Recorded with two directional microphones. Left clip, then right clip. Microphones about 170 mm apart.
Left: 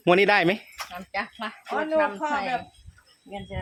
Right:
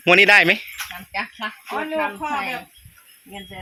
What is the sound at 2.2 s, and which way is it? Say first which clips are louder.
Speech: right 2 dB; 20° left (ahead or behind).